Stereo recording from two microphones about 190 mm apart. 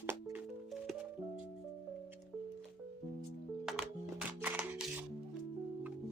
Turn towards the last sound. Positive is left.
turn(degrees=-10)  # may be behind; listen again after turning